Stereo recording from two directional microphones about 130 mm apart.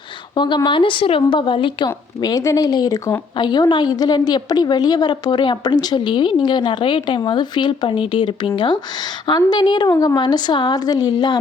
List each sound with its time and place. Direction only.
0.3 s a woman's voice: 35° left (ahead or behind)